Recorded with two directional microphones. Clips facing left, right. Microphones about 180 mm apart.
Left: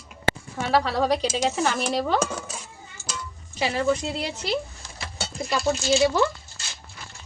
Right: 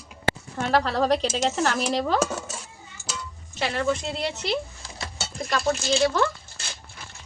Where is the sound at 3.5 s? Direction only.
10° left (ahead or behind).